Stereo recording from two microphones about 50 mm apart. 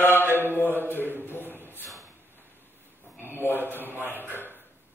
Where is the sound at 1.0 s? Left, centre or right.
Right.